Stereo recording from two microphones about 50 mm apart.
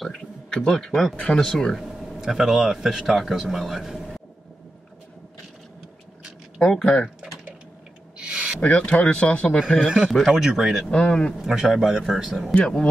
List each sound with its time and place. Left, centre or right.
0.0 s speech: centre
2.0 s speech: centre
6.6 s speech: centre
8.2 s a sound: right
8.5 s speech: left
9.8 s speech: centre
10.9 s speech: centre
11.3 s speech: centre
12.5 s speech: centre